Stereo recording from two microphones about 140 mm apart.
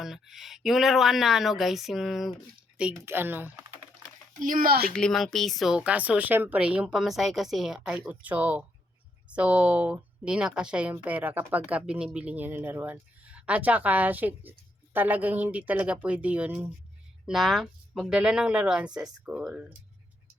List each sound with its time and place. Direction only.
0.0 s speech: centre (ahead or behind)
2.9 s speech: 15° right (ahead or behind)
4.4 s speech: 75° right (ahead or behind); by 4.9 s 90° right
4.9 s speech: 5° left (ahead or behind)